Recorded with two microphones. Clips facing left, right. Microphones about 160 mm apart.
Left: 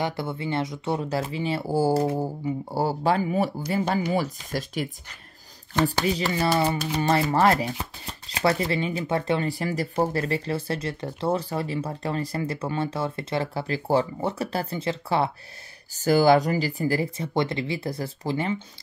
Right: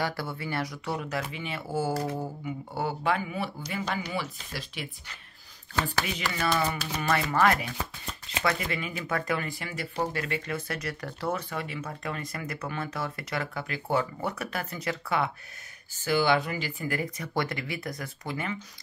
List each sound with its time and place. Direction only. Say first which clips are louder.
0.0 s speech: left 4 dB; 20° left (ahead or behind); by 4.8 s 45° left (ahead or behind)
5.9 s speech: left 7 dB; 35° left (ahead or behind)